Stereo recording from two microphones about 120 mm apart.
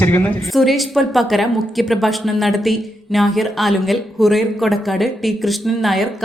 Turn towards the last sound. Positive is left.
turn(degrees=0)  # may be behind; listen again after turning